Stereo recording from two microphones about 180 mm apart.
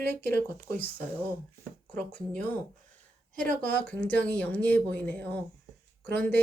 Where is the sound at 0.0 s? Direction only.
60° right (ahead or behind).